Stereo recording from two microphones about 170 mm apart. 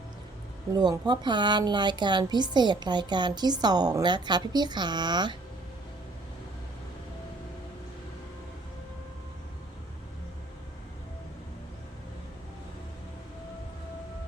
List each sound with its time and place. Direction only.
0.8 s a woman's voice: 25° right (ahead or behind)